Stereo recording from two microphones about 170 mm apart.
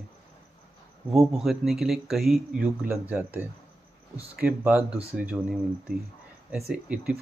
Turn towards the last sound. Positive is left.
turn(degrees=-5)  # may be behind; listen again after turning